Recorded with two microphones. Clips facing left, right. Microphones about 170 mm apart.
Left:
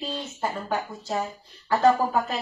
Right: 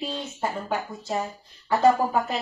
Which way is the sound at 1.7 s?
10° right (ahead or behind).